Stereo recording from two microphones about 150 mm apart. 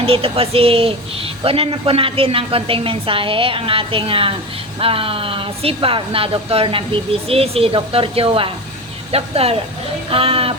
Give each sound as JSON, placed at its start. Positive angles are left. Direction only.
{"t": 0.0, "sound": "speech", "side_deg": -40}